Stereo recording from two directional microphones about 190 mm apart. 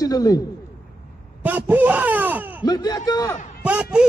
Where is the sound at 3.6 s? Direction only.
5° right (ahead or behind).